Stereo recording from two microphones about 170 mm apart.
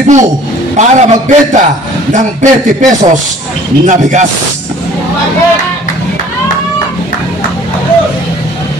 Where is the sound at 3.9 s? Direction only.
45° right (ahead or behind).